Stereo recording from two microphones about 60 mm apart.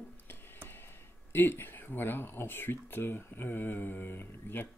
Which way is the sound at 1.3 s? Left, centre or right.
Left.